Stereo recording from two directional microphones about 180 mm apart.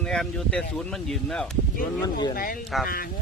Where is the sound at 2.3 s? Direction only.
55° left (ahead or behind).